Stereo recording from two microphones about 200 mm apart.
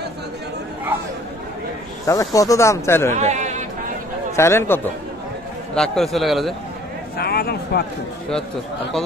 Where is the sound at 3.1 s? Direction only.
35° right (ahead or behind).